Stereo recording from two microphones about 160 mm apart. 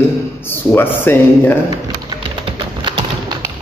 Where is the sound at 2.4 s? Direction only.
30° right (ahead or behind).